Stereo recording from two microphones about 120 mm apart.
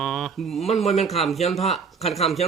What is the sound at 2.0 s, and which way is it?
Speech, 60° left (ahead or behind).